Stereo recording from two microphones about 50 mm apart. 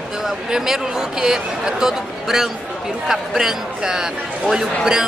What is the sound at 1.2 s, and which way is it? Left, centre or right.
Speech, centre.